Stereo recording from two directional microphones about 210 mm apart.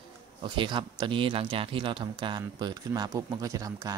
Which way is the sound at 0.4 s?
25° right (ahead or behind).